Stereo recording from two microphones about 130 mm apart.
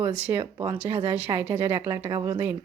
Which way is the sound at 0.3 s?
15° right (ahead or behind).